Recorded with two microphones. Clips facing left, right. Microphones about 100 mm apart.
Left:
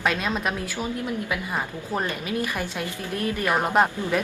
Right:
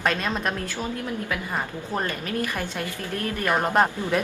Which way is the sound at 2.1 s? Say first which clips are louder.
Even; 15° left (ahead or behind).